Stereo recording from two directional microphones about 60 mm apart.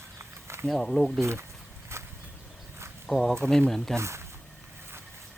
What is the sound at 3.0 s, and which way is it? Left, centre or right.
Speech, centre.